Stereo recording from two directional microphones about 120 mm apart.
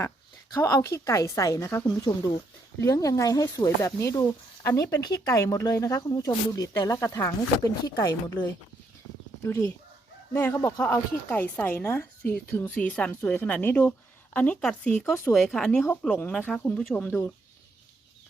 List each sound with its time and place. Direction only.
0.5 s speech: 25° left (ahead or behind)
9.4 s speech: 25° left (ahead or behind)
10.8 s a woman's voice: 15° left (ahead or behind)
15.3 s a woman's voice: 5° left (ahead or behind)